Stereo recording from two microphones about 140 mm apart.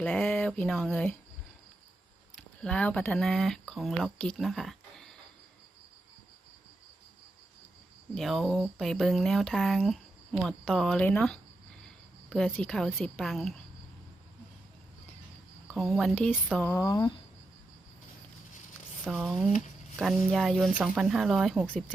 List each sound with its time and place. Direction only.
0.0 s speech: 10° left (ahead or behind)
2.3 s speech: 5° left (ahead or behind)
8.1 s speech: centre (ahead or behind)
15.6 s speech: 5° left (ahead or behind)
16.6 s speech: 20° left (ahead or behind)
19.1 s speech: 5° right (ahead or behind)
21.7 s speech: 10° left (ahead or behind)